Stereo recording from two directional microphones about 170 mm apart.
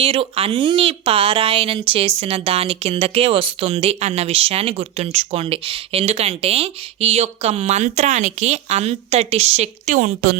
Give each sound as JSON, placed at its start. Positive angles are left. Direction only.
{"t": 0.0, "sound": "speech", "side_deg": -35}